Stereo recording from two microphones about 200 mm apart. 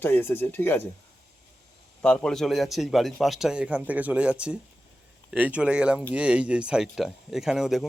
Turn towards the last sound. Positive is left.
turn(degrees=0)  # may be behind; listen again after turning